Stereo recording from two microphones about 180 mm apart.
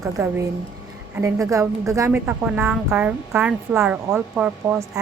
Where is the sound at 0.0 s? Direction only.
15° right (ahead or behind).